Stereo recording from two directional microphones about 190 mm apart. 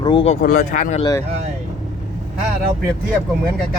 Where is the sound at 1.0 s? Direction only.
20° left (ahead or behind).